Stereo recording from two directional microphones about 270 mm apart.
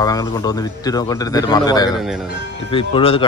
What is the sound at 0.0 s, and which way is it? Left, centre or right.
A man's voice, centre.